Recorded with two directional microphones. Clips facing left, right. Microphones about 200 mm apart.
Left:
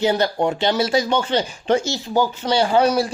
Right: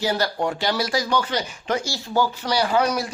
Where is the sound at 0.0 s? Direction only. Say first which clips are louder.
Left 5 dB; 20° left (ahead or behind).